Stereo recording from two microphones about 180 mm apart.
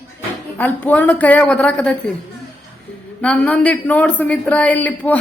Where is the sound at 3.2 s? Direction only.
5° left (ahead or behind).